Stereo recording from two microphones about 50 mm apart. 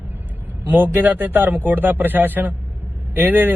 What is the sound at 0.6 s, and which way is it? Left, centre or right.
Speech, right.